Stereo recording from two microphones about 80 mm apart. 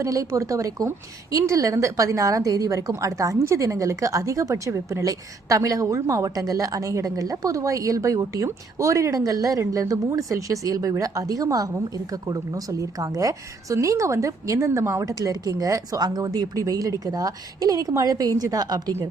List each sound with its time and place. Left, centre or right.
0.0 s a woman's voice: right